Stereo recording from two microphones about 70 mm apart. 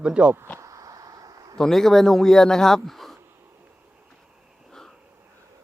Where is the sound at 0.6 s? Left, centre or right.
Right.